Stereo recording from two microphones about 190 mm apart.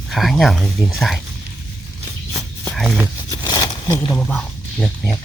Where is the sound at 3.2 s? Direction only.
20° left (ahead or behind).